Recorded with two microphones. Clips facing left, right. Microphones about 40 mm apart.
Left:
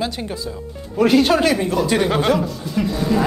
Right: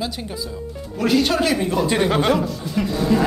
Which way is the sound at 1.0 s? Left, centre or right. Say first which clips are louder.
Left 4 dB; centre.